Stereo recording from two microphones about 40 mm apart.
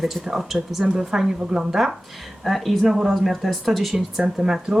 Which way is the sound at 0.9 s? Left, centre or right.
Centre.